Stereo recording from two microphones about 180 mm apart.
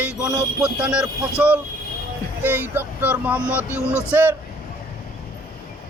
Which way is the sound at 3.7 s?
15° left (ahead or behind).